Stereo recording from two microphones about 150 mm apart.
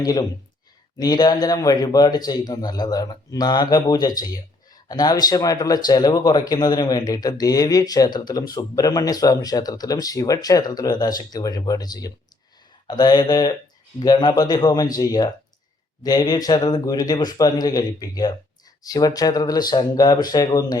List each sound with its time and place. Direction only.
0.0 s a man's voice: 25° left (ahead or behind)